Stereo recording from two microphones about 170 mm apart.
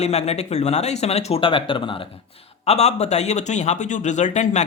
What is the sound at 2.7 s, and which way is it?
Speech, 40° left (ahead or behind).